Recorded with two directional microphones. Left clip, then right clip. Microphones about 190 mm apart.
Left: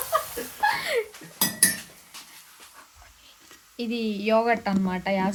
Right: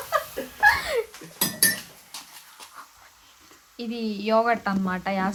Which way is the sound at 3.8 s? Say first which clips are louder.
Left 2 dB; 30° left (ahead or behind).